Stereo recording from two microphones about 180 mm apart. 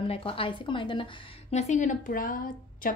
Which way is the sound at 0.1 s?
30° left (ahead or behind).